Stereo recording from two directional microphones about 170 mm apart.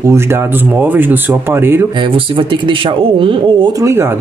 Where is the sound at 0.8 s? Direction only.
10° right (ahead or behind).